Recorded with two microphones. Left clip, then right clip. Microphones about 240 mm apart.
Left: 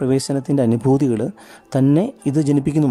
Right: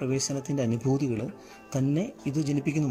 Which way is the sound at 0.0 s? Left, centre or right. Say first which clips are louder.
Left 10 dB; left.